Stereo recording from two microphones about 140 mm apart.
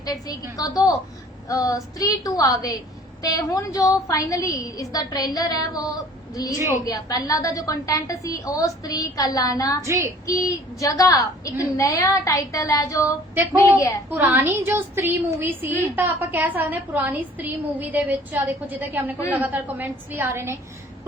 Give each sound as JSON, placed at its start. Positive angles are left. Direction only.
{"t": 0.0, "sound": "a woman's voice", "side_deg": 25}
{"t": 9.8, "sound": "speech", "side_deg": -20}
{"t": 10.2, "sound": "a woman's voice", "side_deg": 25}
{"t": 13.0, "sound": "a woman's voice", "side_deg": -15}
{"t": 13.6, "sound": "a woman's voice", "side_deg": 25}
{"t": 14.1, "sound": "a woman's voice", "side_deg": -15}